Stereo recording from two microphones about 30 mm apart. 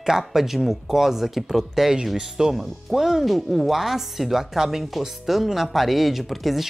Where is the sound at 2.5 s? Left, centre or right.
Centre.